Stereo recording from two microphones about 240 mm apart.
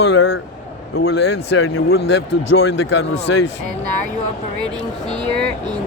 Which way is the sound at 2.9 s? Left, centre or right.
Left.